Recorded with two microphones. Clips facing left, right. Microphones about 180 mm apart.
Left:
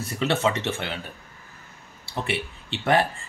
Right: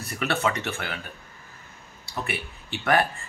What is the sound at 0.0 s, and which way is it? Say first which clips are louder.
Speech: left 3 dB; 25° left (ahead or behind).